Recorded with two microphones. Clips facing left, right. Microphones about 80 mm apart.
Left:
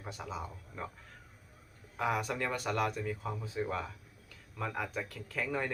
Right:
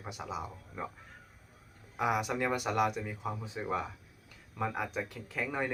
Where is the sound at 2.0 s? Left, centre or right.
Centre.